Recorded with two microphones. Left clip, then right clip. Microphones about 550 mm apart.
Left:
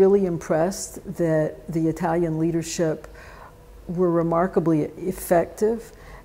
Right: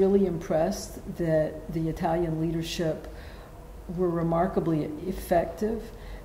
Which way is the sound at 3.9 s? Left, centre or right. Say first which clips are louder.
Left 5 dB; left.